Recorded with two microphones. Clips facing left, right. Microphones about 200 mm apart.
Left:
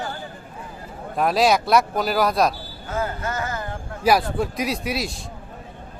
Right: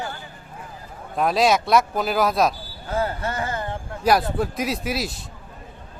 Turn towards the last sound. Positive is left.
turn(degrees=0)  # may be behind; listen again after turning